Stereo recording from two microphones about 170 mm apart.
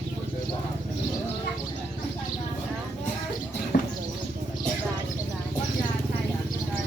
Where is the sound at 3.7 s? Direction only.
45° left (ahead or behind).